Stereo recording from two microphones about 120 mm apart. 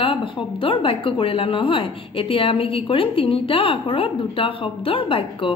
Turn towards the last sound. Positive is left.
turn(degrees=50)  # may be behind; listen again after turning